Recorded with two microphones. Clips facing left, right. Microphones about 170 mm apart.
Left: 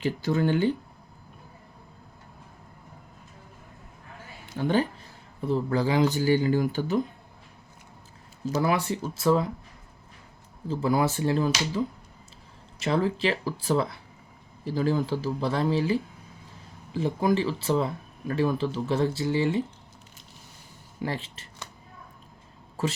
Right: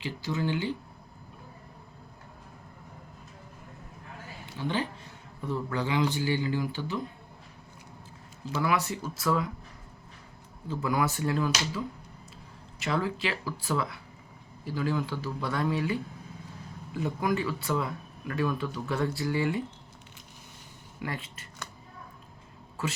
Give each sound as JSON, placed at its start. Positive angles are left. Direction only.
{"t": 0.0, "sound": "speech", "side_deg": 50}
{"t": 4.5, "sound": "speech", "side_deg": 45}
{"t": 5.5, "sound": "speech", "side_deg": 30}
{"t": 8.4, "sound": "speech", "side_deg": 40}
{"t": 10.7, "sound": "speech", "side_deg": 30}
{"t": 12.8, "sound": "speech", "side_deg": 35}
{"t": 21.0, "sound": "speech", "side_deg": 30}